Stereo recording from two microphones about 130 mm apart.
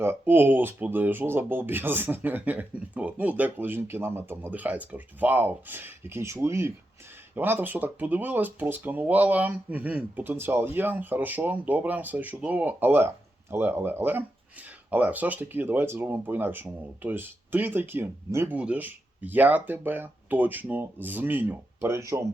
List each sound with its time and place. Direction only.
0.0 s speech: 15° right (ahead or behind)